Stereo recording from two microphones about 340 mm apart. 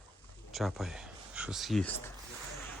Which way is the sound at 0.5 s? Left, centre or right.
Centre.